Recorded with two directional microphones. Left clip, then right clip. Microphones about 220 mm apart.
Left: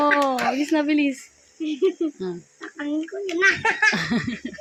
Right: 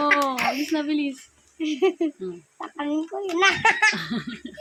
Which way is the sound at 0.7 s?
15° left (ahead or behind).